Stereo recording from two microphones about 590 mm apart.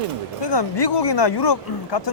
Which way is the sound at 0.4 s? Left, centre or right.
Left.